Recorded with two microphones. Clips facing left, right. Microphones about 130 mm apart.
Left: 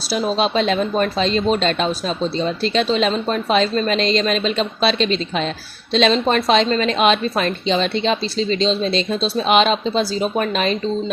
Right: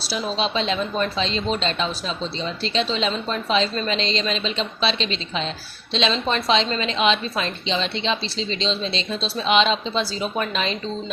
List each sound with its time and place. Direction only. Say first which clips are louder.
0.1 s speech: left 6 dB; 50° left (ahead or behind)